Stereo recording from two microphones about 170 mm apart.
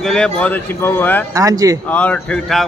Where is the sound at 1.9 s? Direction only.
10° left (ahead or behind).